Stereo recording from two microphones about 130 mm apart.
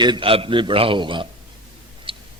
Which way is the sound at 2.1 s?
40° right (ahead or behind).